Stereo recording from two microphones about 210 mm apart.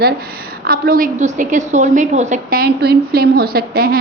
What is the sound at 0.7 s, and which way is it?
A woman's voice, 45° right (ahead or behind).